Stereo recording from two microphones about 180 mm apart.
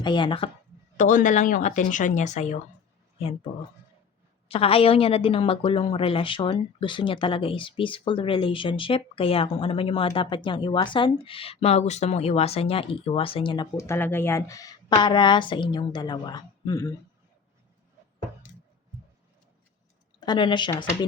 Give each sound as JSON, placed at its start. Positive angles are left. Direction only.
{"t": 0.0, "sound": "a woman's voice", "side_deg": 25}
{"t": 0.9, "sound": "a woman's voice", "side_deg": 45}
{"t": 13.7, "sound": "a woman's voice", "side_deg": 15}
{"t": 20.1, "sound": "a woman's voice", "side_deg": 25}